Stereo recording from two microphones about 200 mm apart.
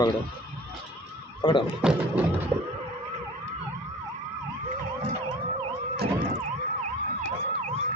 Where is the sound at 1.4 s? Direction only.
25° left (ahead or behind).